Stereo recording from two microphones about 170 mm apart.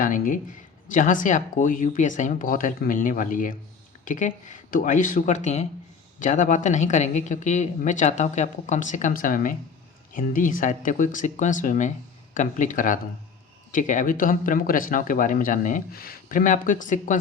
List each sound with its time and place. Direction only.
0.0 s speech: 50° left (ahead or behind)